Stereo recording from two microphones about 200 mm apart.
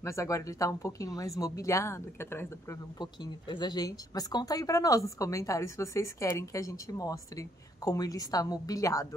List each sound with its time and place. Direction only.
0.0 s speech: 15° left (ahead or behind)